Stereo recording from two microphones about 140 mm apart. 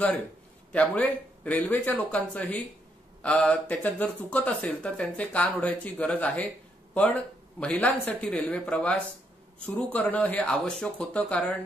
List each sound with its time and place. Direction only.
0.7 s speech: 10° left (ahead or behind)